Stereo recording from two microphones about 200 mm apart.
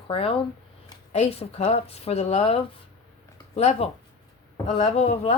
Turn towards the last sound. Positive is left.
turn(degrees=30)  # may be behind; listen again after turning